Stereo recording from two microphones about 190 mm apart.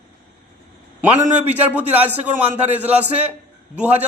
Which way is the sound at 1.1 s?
40° right (ahead or behind).